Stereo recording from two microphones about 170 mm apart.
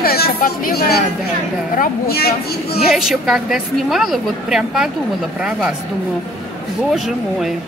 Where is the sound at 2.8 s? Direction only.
Centre (ahead or behind).